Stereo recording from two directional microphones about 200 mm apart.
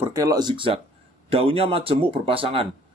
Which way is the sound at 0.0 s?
15° right (ahead or behind).